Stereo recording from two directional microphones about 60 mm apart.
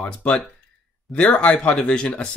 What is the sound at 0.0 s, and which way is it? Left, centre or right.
Speech, centre.